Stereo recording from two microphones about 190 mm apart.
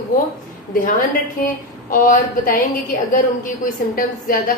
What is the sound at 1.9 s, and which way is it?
A woman's voice, 45° left (ahead or behind).